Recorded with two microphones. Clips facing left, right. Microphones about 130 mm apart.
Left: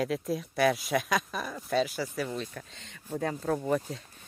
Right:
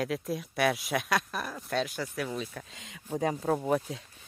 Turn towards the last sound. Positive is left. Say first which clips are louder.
# right 1 dB
turn(degrees=-5)  # may be behind; listen again after turning